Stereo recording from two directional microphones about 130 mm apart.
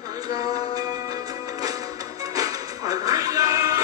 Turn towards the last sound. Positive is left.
turn(degrees=-25)  # may be behind; listen again after turning